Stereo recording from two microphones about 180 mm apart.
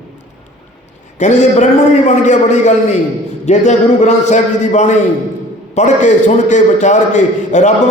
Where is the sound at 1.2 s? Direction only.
40° left (ahead or behind).